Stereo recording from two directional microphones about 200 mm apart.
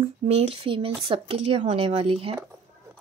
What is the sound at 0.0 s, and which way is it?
Speech, 30° right (ahead or behind).